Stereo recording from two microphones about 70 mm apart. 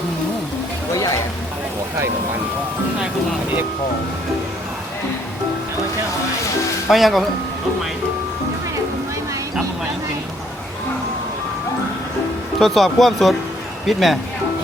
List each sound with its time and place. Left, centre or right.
0.9 s a sound: left
6.9 s speech: centre
12.5 s speech: centre